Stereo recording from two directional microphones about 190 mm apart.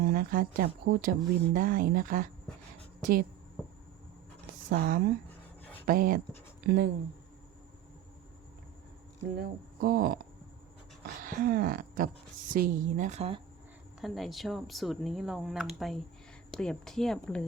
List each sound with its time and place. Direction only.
0.0 s speech: 50° right (ahead or behind)
4.7 s speech: 55° right (ahead or behind)
9.4 s speech: 50° right (ahead or behind)
11.2 s a woman's voice: 50° right (ahead or behind); by 13.4 s 35° right (ahead or behind)
14.0 s speech: centre (ahead or behind)